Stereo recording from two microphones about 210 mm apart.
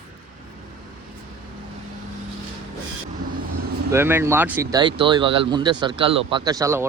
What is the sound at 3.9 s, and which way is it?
Speech, 10° right (ahead or behind).